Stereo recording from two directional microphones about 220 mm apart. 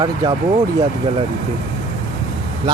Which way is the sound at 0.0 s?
20° right (ahead or behind).